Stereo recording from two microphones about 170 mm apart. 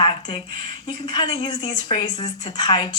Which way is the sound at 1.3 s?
30° left (ahead or behind).